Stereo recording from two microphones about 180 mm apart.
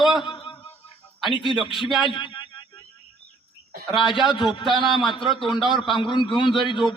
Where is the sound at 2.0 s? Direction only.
25° left (ahead or behind).